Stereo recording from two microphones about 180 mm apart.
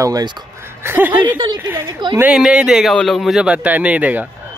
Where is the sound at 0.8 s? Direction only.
10° right (ahead or behind).